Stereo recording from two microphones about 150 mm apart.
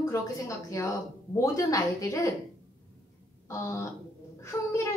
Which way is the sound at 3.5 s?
20° left (ahead or behind).